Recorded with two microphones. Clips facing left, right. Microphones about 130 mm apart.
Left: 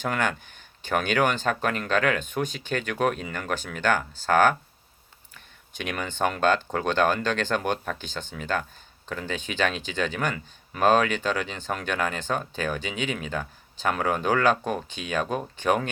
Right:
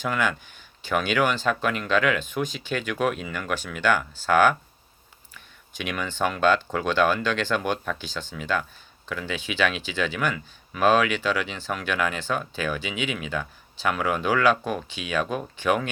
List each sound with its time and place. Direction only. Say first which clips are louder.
0.0 s speech: right 1 dB; 50° left (ahead or behind)
5.8 s speech: even; 40° left (ahead or behind)